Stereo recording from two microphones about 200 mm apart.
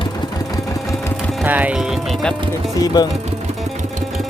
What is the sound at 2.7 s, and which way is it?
Speech, 20° left (ahead or behind).